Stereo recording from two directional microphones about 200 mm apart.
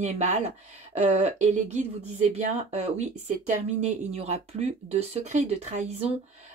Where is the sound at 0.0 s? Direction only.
35° right (ahead or behind).